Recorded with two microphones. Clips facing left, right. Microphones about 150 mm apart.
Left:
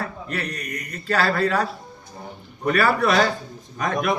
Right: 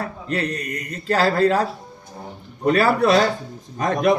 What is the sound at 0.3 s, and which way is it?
Speech, 30° right (ahead or behind).